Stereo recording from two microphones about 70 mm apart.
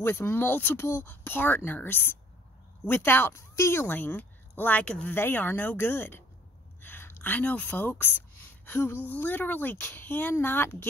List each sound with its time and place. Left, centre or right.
0.0 s speech: left
3.8 s speech: left
5.1 s speech: left
6.8 s a sound: left
9.1 s speech: left